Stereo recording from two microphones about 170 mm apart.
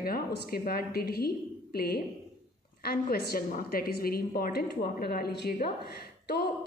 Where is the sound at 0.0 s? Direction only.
60° left (ahead or behind).